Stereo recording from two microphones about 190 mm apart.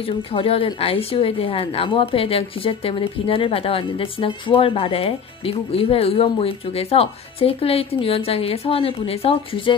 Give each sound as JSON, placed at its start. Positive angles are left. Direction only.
{"t": 0.0, "sound": "a woman's voice", "side_deg": 30}